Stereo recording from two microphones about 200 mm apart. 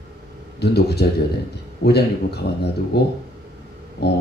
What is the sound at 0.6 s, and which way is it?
A man's voice, 55° left (ahead or behind).